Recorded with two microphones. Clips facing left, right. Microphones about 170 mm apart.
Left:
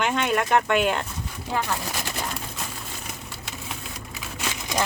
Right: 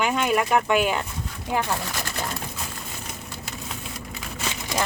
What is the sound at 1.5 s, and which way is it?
Speech, 15° right (ahead or behind).